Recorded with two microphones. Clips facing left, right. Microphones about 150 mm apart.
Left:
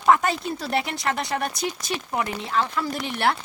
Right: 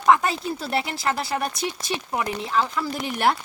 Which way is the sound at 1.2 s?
Centre (ahead or behind).